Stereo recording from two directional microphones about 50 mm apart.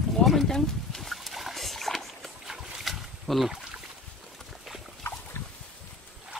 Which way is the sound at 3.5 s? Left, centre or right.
Centre.